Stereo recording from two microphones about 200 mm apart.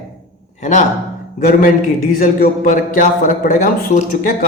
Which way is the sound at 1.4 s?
45° left (ahead or behind).